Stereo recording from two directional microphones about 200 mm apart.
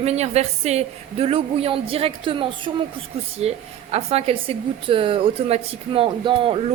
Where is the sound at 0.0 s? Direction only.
30° right (ahead or behind).